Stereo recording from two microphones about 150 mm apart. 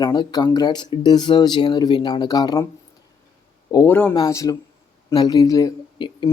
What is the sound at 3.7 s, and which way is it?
Speech, 20° left (ahead or behind).